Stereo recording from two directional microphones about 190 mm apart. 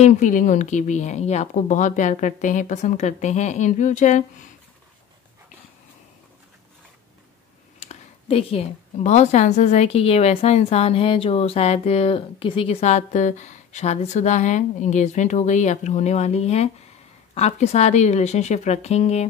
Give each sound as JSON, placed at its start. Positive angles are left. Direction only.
{"t": 0.0, "sound": "a woman's voice", "side_deg": 40}
{"t": 7.8, "sound": "a woman's voice", "side_deg": 35}